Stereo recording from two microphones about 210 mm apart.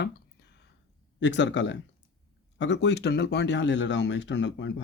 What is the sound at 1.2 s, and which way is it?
Speech, 60° left (ahead or behind).